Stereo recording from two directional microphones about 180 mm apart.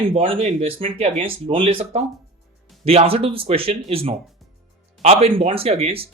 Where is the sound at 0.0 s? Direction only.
35° right (ahead or behind).